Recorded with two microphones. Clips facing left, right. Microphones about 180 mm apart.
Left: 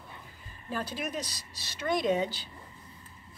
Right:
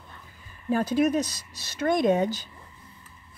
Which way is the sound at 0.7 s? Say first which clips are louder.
Right 12 dB; 45° right (ahead or behind).